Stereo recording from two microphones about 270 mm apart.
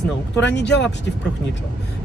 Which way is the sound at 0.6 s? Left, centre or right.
Left.